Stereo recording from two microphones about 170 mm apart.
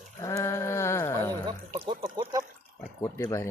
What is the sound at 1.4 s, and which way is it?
Speech, 30° right (ahead or behind).